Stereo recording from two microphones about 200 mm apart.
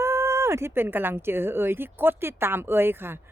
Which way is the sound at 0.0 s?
15° right (ahead or behind).